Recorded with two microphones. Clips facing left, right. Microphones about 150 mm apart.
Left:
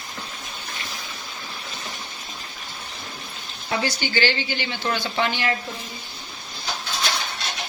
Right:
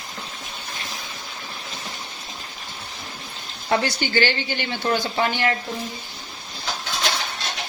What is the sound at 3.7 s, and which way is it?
Speech, 50° right (ahead or behind).